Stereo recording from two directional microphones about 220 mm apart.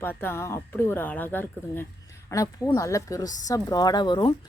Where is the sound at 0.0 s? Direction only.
10° left (ahead or behind).